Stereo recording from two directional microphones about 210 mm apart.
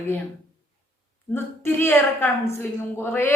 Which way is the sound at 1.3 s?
10° left (ahead or behind).